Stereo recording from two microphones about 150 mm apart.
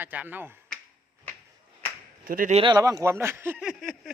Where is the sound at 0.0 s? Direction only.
10° right (ahead or behind).